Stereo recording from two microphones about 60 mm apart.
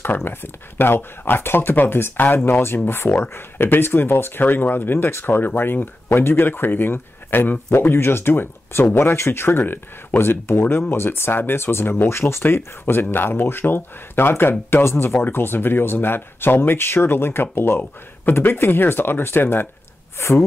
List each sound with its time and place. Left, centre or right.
0.0 s speech: left
20.2 s speech: left